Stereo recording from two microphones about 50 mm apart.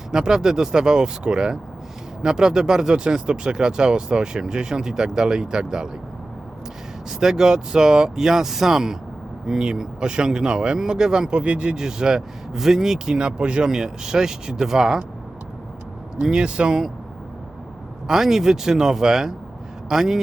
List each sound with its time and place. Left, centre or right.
0.1 s speech: centre
7.1 s speech: centre
16.2 s speech: centre
18.1 s speech: centre